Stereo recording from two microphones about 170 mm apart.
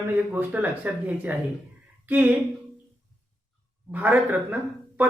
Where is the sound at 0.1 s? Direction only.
10° right (ahead or behind).